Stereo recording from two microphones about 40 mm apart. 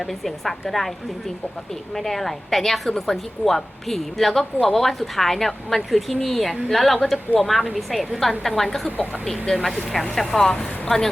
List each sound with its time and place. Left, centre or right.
0.0 s a woman's voice: centre
2.0 s a woman's voice: centre